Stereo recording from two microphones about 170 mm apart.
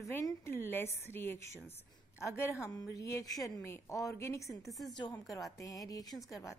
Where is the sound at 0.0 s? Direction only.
15° left (ahead or behind).